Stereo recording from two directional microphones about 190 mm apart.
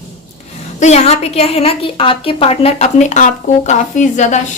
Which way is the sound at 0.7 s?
35° left (ahead or behind).